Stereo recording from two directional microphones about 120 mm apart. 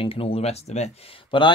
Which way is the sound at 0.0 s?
50° left (ahead or behind).